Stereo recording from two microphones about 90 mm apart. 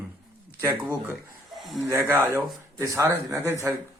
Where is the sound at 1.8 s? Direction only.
25° right (ahead or behind).